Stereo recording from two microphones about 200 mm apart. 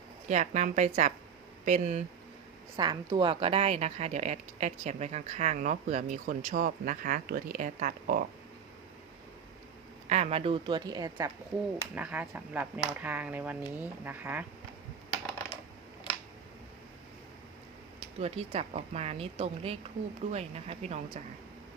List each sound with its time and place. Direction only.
0.3 s speech: 35° right (ahead or behind)
2.7 s speech: 20° right (ahead or behind); by 8.2 s 45° right (ahead or behind)
10.1 s a woman's voice: 30° right (ahead or behind)
11.9 s speech: 5° right (ahead or behind)
18.2 s speech: 30° right (ahead or behind)